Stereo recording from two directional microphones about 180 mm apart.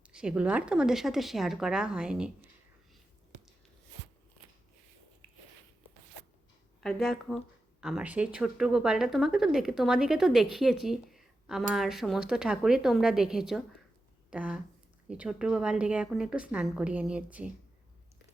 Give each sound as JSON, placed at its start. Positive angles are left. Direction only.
{"t": 0.0, "sound": "speech", "side_deg": -5}
{"t": 6.8, "sound": "speech", "side_deg": 0}